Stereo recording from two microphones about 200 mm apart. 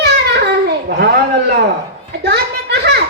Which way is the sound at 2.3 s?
55° right (ahead or behind).